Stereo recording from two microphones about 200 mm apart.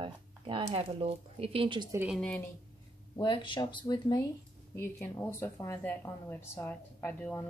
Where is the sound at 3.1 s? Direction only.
20° left (ahead or behind).